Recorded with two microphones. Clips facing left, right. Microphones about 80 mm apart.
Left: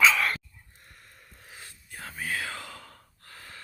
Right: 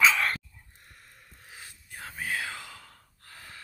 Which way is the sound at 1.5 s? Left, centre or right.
Centre.